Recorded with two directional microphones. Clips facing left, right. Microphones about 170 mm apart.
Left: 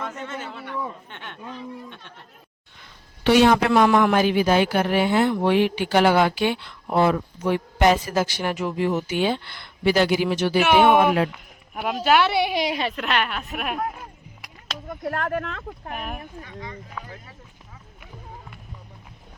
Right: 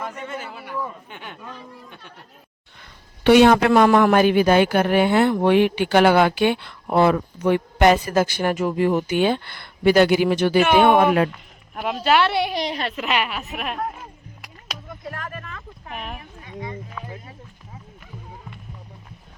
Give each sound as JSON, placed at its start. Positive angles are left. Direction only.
{"t": 0.0, "sound": "a sound", "side_deg": -5}
{"t": 3.2, "sound": "a woman's voice", "side_deg": -60}
{"t": 10.6, "sound": "speech", "side_deg": 10}
{"t": 10.9, "sound": "a woman's voice", "side_deg": -55}
{"t": 11.3, "sound": "a woman's voice", "side_deg": 5}
{"t": 14.8, "sound": "speech", "side_deg": 65}
{"t": 15.9, "sound": "a woman's voice", "side_deg": 0}
{"t": 16.5, "sound": "speech", "side_deg": -20}